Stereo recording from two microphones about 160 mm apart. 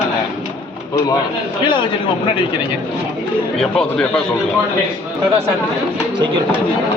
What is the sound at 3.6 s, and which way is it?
Speech, 5° left (ahead or behind).